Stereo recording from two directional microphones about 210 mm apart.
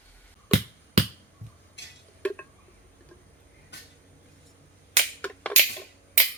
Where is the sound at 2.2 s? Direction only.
5° left (ahead or behind).